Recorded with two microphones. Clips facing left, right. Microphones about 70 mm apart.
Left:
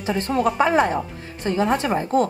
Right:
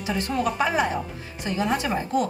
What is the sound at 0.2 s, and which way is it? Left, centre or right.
Speech, left.